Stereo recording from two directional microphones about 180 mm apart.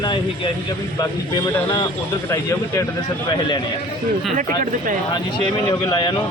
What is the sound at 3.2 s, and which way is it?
Speech, 25° left (ahead or behind).